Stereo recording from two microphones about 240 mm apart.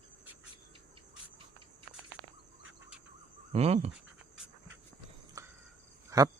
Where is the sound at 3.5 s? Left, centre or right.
Right.